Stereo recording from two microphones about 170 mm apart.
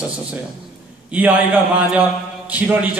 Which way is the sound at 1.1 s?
10° right (ahead or behind).